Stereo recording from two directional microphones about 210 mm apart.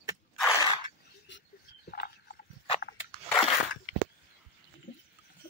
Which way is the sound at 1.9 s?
45° left (ahead or behind).